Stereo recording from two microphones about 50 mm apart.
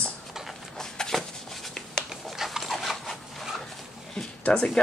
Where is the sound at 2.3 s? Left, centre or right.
Centre.